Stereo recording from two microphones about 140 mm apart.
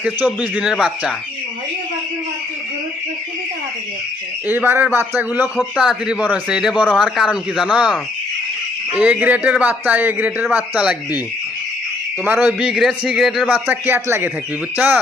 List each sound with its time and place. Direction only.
0.3 s a man's voice: 5° right (ahead or behind)
4.4 s a man's voice: 15° right (ahead or behind)
5.5 s a man's voice: centre (ahead or behind)
12.2 s a man's voice: 10° right (ahead or behind)
13.7 s a man's voice: 15° right (ahead or behind)